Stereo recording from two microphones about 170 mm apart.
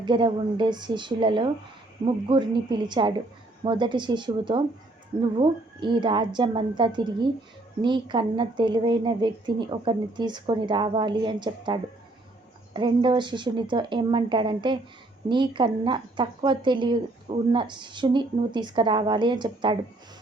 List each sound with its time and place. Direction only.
0.0 s a woman's voice: 25° right (ahead or behind)